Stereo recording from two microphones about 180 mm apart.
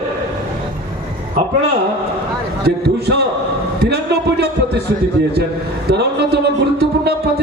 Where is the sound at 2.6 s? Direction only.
65° right (ahead or behind).